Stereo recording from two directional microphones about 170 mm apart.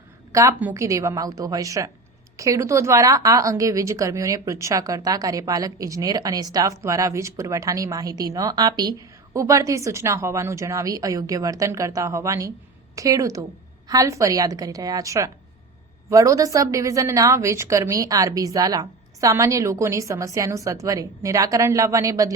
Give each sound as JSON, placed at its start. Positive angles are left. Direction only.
{"t": 0.3, "sound": "speech", "side_deg": -15}